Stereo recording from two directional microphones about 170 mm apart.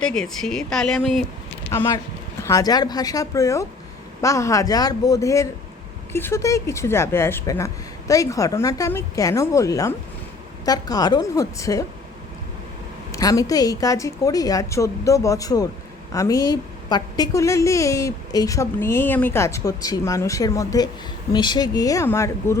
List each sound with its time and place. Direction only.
0.0 s speech: 5° left (ahead or behind)
1.7 s a woman's voice: 15° left (ahead or behind)
13.1 s a woman's voice: 20° left (ahead or behind)